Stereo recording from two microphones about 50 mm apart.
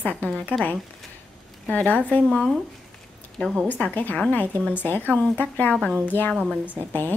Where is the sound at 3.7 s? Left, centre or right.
Left.